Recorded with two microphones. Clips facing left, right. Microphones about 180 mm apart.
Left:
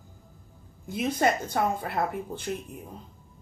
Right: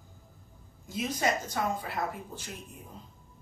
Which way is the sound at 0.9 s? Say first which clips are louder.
Left 5 dB; 60° left (ahead or behind).